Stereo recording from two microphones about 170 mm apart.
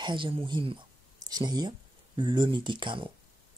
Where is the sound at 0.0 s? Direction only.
30° right (ahead or behind).